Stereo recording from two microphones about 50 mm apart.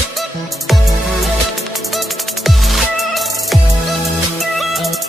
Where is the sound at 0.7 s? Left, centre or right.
Centre.